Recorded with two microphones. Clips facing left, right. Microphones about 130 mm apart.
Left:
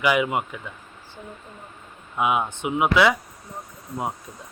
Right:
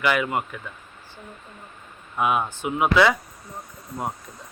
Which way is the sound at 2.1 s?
15° left (ahead or behind).